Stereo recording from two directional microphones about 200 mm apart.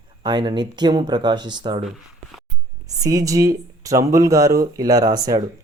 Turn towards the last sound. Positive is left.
turn(degrees=-20)  # may be behind; listen again after turning